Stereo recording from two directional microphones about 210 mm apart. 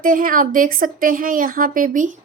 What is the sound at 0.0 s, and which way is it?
A woman's voice, 40° right (ahead or behind).